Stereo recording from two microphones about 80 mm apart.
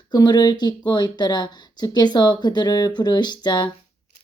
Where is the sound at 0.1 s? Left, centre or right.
Left.